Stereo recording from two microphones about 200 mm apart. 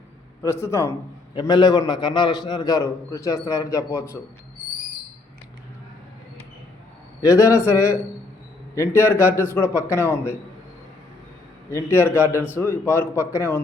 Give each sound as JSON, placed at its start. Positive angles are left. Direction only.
{"t": 0.4, "sound": "a man's voice", "side_deg": 15}
{"t": 7.2, "sound": "a man's voice", "side_deg": 15}
{"t": 9.0, "sound": "a man's voice", "side_deg": 15}
{"t": 11.7, "sound": "a man's voice", "side_deg": 10}